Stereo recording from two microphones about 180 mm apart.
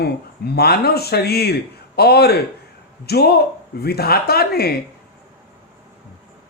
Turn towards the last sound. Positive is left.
turn(degrees=60)  # may be behind; listen again after turning